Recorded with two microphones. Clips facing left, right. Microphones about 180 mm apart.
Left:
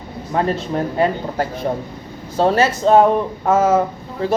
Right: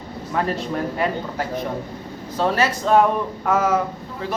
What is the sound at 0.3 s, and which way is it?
Speech, 30° left (ahead or behind).